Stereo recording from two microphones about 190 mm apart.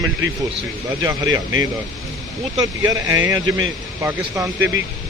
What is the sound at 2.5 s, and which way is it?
Speech, 20° right (ahead or behind).